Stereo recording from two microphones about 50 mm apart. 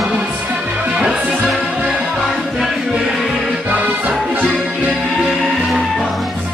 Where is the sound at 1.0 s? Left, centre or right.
Centre.